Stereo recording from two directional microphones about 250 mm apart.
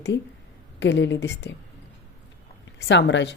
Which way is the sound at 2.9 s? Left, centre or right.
Left.